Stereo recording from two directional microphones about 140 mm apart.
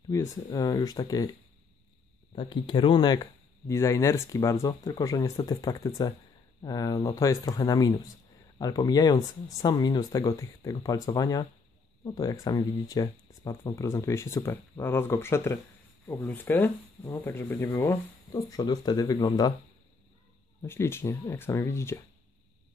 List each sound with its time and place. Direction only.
0.1 s speech: 20° left (ahead or behind)
2.3 s speech: 30° left (ahead or behind)
20.6 s speech: 15° left (ahead or behind)